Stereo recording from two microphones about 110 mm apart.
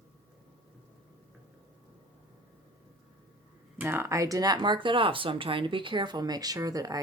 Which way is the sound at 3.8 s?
20° right (ahead or behind).